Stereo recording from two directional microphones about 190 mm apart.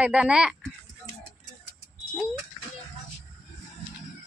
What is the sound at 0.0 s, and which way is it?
Speech, 5° right (ahead or behind).